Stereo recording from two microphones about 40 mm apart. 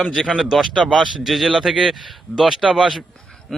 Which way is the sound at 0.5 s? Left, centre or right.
Centre.